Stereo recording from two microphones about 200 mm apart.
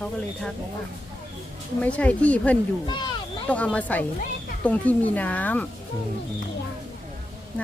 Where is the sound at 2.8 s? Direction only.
25° left (ahead or behind).